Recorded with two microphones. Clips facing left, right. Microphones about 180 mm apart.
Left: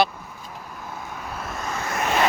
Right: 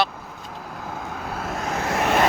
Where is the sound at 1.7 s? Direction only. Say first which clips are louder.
Right 3 dB; 75° right (ahead or behind).